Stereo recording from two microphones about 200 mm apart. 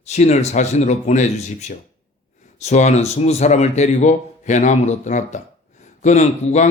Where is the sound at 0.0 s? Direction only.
35° left (ahead or behind).